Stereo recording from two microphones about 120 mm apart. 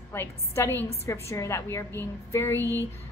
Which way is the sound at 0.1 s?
20° left (ahead or behind).